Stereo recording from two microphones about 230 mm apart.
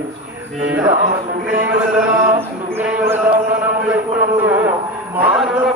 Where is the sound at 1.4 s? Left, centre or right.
Centre.